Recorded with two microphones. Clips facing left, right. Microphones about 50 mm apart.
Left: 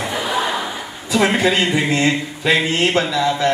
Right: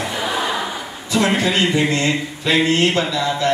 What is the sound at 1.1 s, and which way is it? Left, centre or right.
Speech, centre.